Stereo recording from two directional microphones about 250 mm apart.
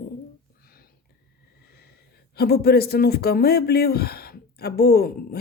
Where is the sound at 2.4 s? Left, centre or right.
Left.